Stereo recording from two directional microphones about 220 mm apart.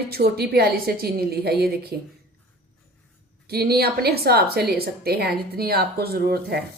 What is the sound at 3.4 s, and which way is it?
A woman's voice, 45° right (ahead or behind).